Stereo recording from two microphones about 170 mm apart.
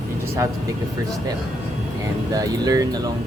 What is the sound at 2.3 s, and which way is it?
Speech, 20° right (ahead or behind).